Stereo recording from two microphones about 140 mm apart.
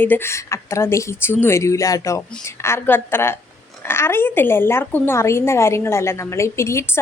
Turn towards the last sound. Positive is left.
turn(degrees=20)  # may be behind; listen again after turning